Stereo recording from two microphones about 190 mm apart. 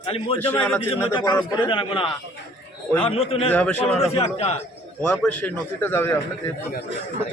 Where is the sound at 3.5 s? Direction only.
5° left (ahead or behind).